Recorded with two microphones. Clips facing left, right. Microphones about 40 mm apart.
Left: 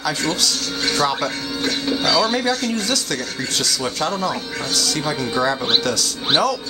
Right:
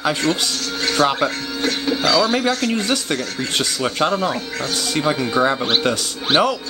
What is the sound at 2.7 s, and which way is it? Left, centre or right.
Speech, right.